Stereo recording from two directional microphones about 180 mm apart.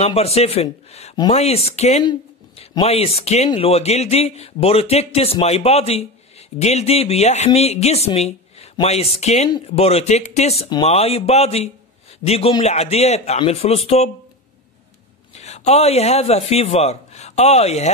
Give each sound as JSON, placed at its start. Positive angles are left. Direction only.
{"t": 0.0, "sound": "speech", "side_deg": 35}
{"t": 2.0, "sound": "a sound", "side_deg": 35}
{"t": 2.8, "sound": "speech", "side_deg": 35}
{"t": 15.3, "sound": "a man's voice", "side_deg": 40}